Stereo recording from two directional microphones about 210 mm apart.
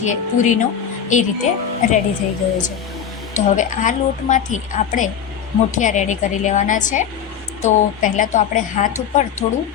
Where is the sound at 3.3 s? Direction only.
35° left (ahead or behind).